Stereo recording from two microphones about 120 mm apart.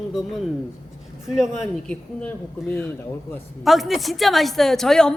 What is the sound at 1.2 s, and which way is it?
Speech, 5° right (ahead or behind).